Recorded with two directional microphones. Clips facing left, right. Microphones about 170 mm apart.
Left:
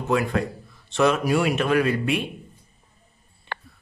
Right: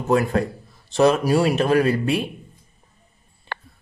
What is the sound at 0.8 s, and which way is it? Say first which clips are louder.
Speech: right 3 dB; 35° right (ahead or behind).